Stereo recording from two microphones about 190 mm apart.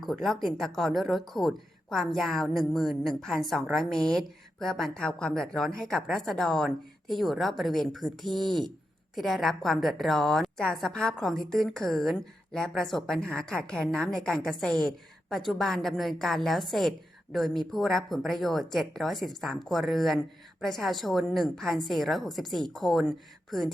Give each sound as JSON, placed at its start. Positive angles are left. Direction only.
{"t": 0.0, "sound": "speech", "side_deg": 0}